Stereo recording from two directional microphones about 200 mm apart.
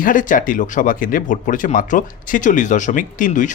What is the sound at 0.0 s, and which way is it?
Speech, 40° left (ahead or behind).